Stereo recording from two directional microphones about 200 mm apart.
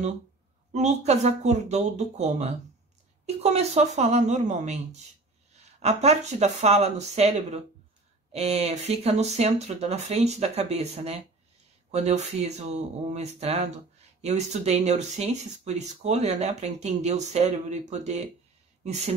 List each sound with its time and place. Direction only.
0.7 s speech: 35° right (ahead or behind)